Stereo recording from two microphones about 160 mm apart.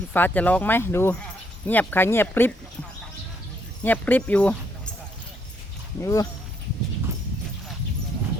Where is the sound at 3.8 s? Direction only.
10° left (ahead or behind).